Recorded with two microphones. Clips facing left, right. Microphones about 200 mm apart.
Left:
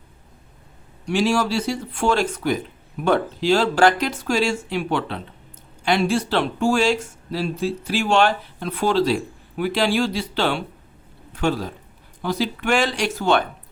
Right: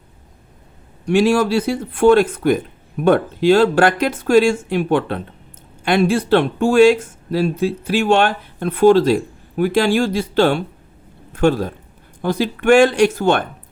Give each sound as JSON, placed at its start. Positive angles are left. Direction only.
{"t": 1.0, "sound": "a man's voice", "side_deg": -55}